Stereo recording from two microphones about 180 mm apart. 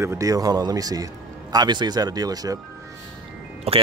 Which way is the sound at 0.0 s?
15° right (ahead or behind).